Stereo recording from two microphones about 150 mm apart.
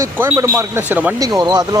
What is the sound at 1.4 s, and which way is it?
Speech, 25° right (ahead or behind).